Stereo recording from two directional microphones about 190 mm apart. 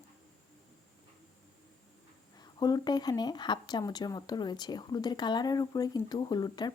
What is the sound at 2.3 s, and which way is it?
Speech, 20° left (ahead or behind).